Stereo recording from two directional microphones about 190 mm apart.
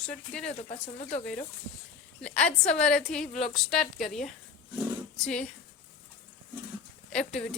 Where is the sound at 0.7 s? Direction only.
40° left (ahead or behind).